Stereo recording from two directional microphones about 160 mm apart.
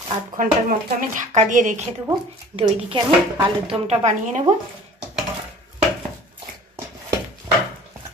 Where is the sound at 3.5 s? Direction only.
40° right (ahead or behind).